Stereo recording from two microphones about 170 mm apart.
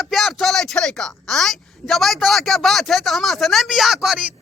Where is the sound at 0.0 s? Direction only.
Centre (ahead or behind).